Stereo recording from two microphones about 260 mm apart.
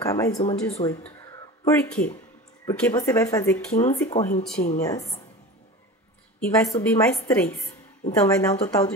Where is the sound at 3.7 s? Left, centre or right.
Left.